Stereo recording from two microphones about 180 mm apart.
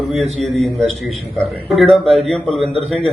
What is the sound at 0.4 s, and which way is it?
Mantra, centre (ahead or behind).